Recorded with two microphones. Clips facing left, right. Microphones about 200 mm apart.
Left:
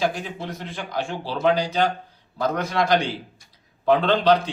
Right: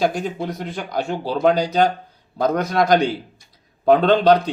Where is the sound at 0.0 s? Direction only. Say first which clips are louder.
Right 5 dB; 45° right (ahead or behind).